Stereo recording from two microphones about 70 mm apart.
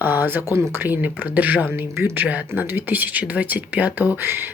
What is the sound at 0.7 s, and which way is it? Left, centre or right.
Speech, right.